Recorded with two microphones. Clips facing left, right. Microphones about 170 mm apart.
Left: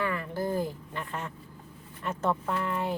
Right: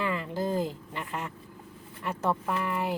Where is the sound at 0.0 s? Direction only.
20° right (ahead or behind).